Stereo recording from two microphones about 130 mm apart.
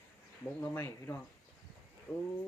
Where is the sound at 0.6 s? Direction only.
15° left (ahead or behind).